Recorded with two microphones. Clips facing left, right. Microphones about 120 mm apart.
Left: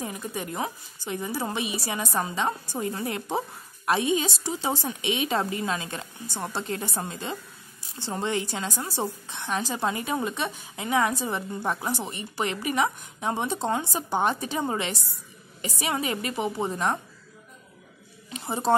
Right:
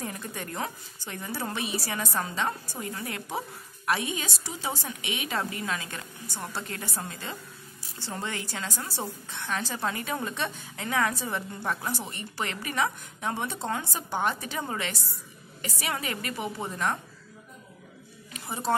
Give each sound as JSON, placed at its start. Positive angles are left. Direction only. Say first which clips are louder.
{"t": 0.0, "sound": "a woman's voice", "louder": "left 3 dB", "side_deg": 15}
{"t": 18.3, "sound": "a woman's voice", "louder": "left 5 dB", "side_deg": 25}